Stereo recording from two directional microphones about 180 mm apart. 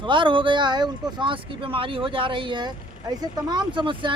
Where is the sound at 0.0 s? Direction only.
25° right (ahead or behind).